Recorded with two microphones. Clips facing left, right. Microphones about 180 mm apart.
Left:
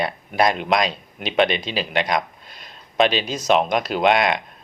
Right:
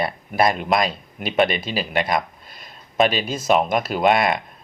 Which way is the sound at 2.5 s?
50° right (ahead or behind).